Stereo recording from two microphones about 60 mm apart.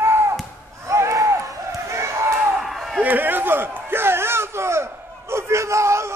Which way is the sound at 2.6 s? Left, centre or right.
Centre.